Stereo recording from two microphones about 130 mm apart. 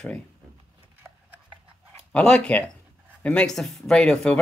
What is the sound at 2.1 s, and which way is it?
Speech, 5° left (ahead or behind).